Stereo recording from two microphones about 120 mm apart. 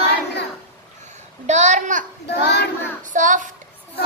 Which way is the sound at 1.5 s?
80° right.